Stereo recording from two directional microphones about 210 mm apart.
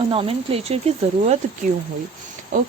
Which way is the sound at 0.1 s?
25° right (ahead or behind).